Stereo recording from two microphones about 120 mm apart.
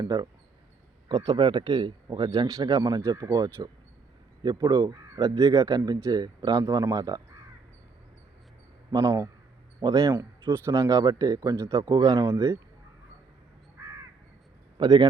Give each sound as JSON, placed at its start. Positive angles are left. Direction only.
{"t": 0.0, "sound": "speech", "side_deg": -35}
{"t": 8.9, "sound": "speech", "side_deg": -30}
{"t": 14.8, "sound": "speech", "side_deg": -40}